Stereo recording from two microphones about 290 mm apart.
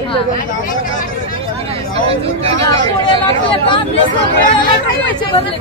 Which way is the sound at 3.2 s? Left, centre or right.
Centre.